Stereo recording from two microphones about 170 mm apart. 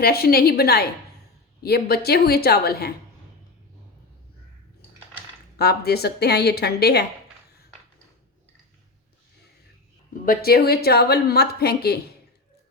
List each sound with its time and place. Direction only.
0.0 s a woman's voice: 65° left (ahead or behind)
5.5 s a woman's voice: 70° left (ahead or behind)
10.2 s a woman's voice: 65° left (ahead or behind)